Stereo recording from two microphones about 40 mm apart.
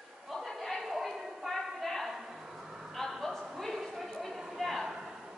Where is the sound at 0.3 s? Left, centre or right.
Centre.